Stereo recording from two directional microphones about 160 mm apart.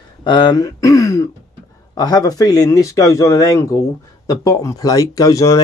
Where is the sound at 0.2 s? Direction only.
30° left (ahead or behind).